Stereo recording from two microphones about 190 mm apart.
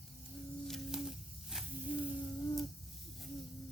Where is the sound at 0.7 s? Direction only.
Centre (ahead or behind).